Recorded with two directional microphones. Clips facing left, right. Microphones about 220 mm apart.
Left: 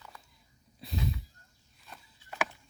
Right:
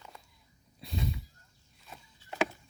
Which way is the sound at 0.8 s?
Centre (ahead or behind).